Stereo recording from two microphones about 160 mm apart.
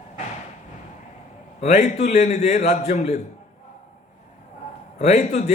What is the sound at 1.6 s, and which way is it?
A man's voice, 45° left (ahead or behind).